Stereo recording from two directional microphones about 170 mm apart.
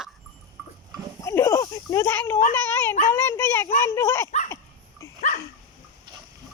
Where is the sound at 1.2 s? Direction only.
15° left (ahead or behind).